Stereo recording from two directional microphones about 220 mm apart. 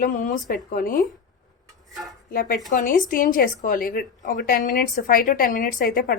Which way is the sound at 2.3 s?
40° left (ahead or behind).